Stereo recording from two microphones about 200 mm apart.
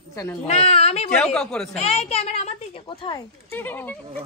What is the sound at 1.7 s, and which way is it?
A child's voice, 35° left (ahead or behind).